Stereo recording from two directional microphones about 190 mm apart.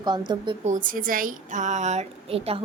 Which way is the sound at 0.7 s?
45° right (ahead or behind).